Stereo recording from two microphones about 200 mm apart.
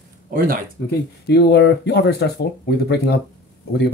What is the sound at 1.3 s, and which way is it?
Speech, 55° left (ahead or behind).